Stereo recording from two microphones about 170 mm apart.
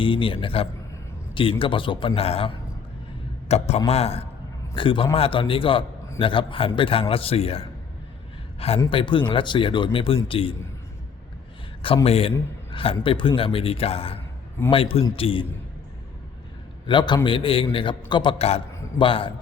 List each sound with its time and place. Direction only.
0.0 s a man's voice: 30° left (ahead or behind)
3.5 s a man's voice: 40° left (ahead or behind)
12.0 s a man's voice: 35° left (ahead or behind)
16.8 s a man's voice: 25° left (ahead or behind)